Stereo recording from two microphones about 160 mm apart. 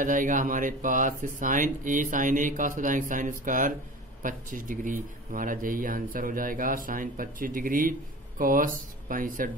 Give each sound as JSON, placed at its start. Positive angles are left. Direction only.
{"t": 0.0, "sound": "speech", "side_deg": -55}